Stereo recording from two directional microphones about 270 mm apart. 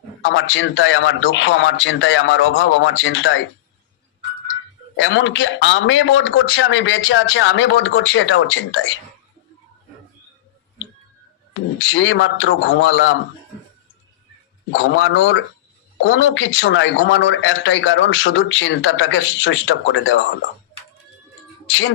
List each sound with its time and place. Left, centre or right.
0.3 s speech: left
4.9 s speech: left
11.8 s speech: left
14.7 s speech: left
21.7 s speech: left